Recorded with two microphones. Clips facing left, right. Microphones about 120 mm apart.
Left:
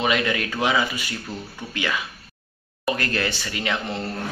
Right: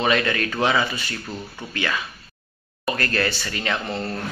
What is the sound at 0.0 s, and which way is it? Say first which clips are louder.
Speech: right 1 dB; 15° left (ahead or behind).